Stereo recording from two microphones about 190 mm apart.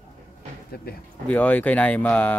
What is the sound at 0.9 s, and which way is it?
Speech, 55° left (ahead or behind).